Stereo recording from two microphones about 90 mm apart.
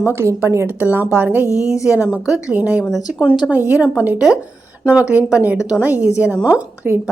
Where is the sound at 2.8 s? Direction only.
5° right (ahead or behind).